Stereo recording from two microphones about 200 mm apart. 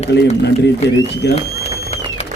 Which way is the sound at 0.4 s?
60° left (ahead or behind).